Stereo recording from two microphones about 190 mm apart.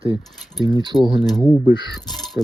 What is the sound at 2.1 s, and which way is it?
Crow, centre (ahead or behind).